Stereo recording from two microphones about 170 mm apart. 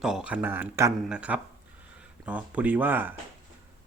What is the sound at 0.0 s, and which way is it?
Speech, 5° right (ahead or behind).